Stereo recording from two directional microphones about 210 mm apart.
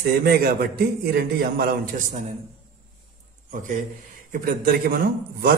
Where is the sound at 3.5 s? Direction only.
40° right (ahead or behind).